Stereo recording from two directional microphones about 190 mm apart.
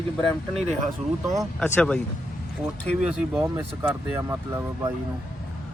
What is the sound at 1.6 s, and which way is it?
Speech, 5° left (ahead or behind).